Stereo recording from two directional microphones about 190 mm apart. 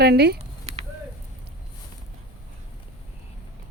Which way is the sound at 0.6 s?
35° right (ahead or behind).